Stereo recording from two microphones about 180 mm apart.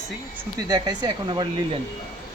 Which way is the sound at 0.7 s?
25° right (ahead or behind).